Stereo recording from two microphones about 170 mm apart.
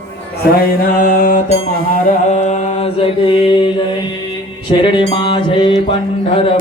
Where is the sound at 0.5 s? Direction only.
55° left (ahead or behind).